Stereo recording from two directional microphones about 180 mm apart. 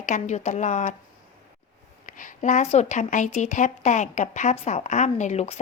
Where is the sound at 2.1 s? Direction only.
45° left (ahead or behind).